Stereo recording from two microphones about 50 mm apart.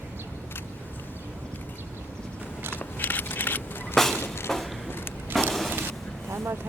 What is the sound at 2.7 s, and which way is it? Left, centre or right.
Crackle, left.